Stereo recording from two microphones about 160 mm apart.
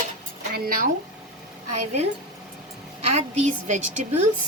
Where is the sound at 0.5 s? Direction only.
70° right (ahead or behind).